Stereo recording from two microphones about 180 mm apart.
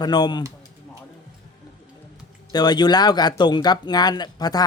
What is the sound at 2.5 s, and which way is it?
Speech, 25° left (ahead or behind).